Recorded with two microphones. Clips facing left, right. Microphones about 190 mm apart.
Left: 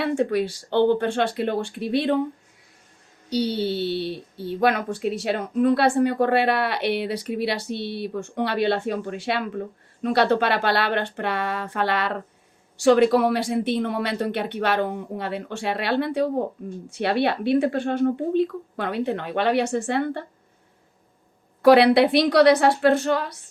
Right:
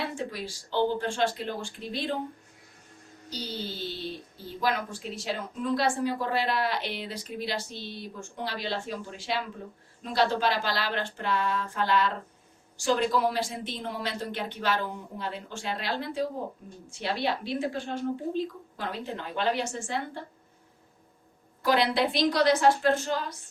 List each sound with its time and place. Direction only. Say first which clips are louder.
0.0 s speech: left 11 dB; 65° left (ahead or behind)
3.2 s speech: left 13 dB; 65° left (ahead or behind)
21.6 s a woman's voice: left 11 dB; 65° left (ahead or behind)